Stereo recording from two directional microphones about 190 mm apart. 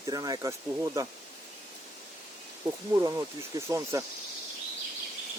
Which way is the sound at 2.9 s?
15° right (ahead or behind).